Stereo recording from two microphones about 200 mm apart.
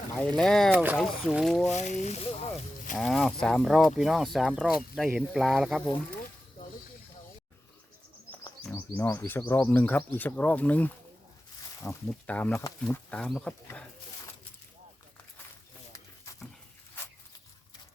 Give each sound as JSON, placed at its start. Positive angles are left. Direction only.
{"t": 0.2, "sound": "speech", "side_deg": 5}
{"t": 0.7, "sound": "speech", "side_deg": -10}
{"t": 1.6, "sound": "speech", "side_deg": 35}
{"t": 2.9, "sound": "speech", "side_deg": 0}
{"t": 9.0, "sound": "speech", "side_deg": 10}
{"t": 15.9, "sound": "a sound", "side_deg": 15}